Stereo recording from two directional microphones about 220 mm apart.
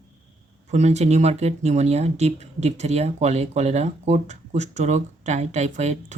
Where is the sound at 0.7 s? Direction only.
30° right (ahead or behind).